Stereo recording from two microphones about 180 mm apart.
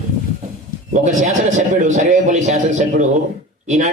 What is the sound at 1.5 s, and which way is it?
A man's voice, 40° right (ahead or behind).